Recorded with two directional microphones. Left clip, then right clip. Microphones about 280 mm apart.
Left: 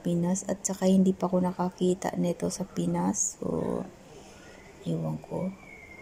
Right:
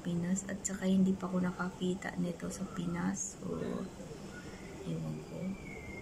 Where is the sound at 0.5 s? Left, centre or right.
Centre.